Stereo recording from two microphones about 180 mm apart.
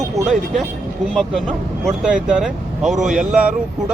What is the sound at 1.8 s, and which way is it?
Speech, 5° right (ahead or behind).